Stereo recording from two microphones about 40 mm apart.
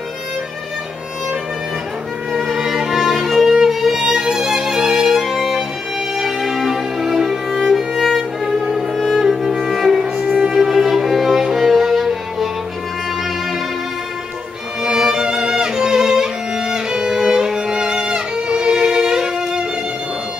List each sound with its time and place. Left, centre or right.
2.5 s violin: centre
3.6 s music: centre
8.2 s violin: centre
8.9 s music: centre
10.3 s violin: centre
11.5 s music: centre
14.8 s music: centre